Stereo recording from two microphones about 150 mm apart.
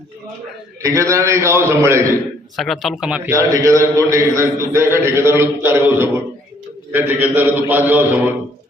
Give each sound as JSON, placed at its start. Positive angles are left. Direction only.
{"t": 0.8, "sound": "a man's voice", "side_deg": -20}
{"t": 2.6, "sound": "speech", "side_deg": 0}
{"t": 3.3, "sound": "a man's voice", "side_deg": -20}